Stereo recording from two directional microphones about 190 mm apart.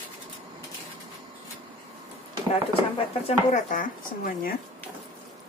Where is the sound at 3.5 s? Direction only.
45° left (ahead or behind).